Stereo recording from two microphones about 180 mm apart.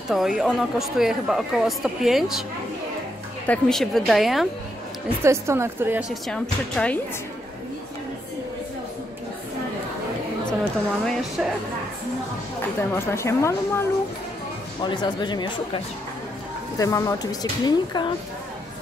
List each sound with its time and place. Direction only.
0.1 s speech: centre (ahead or behind)
3.4 s speech: 5° left (ahead or behind)
5.2 s speech: 15° right (ahead or behind); by 7.0 s 5° left (ahead or behind)
10.6 s speech: 5° left (ahead or behind)
12.9 s speech: 15° left (ahead or behind)
14.8 s a woman's voice: 25° left (ahead or behind)